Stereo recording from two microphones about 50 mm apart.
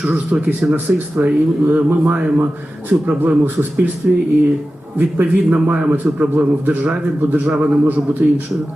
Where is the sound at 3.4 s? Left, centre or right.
Right.